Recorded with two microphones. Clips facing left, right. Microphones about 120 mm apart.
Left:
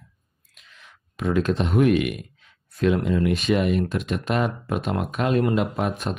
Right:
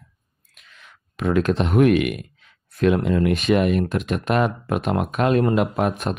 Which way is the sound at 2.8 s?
60° right (ahead or behind).